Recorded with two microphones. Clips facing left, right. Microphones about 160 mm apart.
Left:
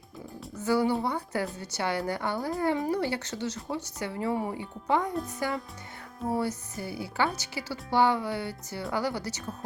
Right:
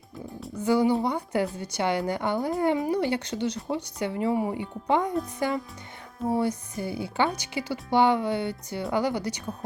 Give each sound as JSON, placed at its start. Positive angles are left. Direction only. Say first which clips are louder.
{"t": 0.6, "sound": "speech", "louder": "right 3 dB", "side_deg": -20}